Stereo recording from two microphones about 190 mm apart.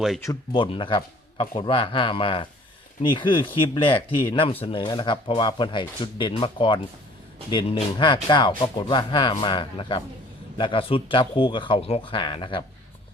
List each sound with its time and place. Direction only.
0.2 s speech: 20° left (ahead or behind)